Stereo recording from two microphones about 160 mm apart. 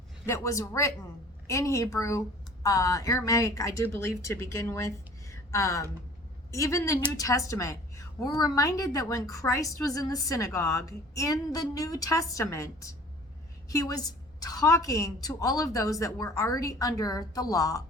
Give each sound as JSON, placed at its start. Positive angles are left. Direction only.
{"t": 0.3, "sound": "a woman's voice", "side_deg": 20}